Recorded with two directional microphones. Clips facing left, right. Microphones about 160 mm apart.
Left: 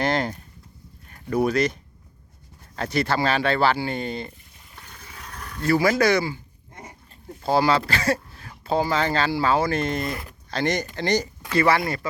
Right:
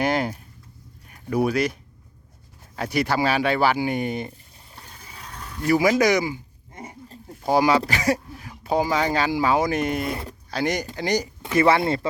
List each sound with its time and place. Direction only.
0.0 s speech: 10° right (ahead or behind)
2.7 s speech: 10° right (ahead or behind)
5.5 s speech: 15° right (ahead or behind)
7.4 s speech: 15° right (ahead or behind)
11.4 s speech: 20° right (ahead or behind)